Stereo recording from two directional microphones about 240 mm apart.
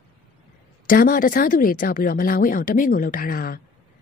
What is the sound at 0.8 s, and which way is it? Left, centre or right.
A woman's voice, left.